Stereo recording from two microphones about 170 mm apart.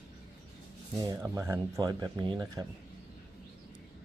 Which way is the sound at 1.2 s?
15° right (ahead or behind).